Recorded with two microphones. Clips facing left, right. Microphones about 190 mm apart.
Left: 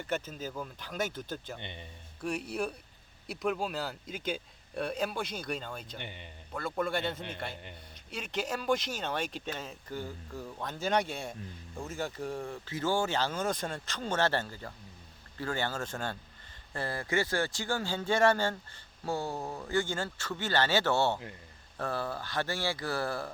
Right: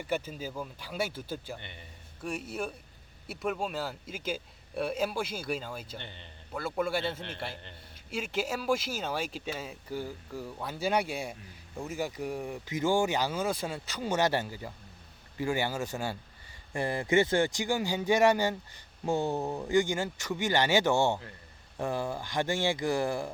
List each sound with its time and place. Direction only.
0.0 s speech: 10° right (ahead or behind)
1.5 s a man's voice: 20° left (ahead or behind)
2.2 s a man's voice: centre (ahead or behind)
6.0 s speech: 15° left (ahead or behind)
6.5 s speech: 5° right (ahead or behind)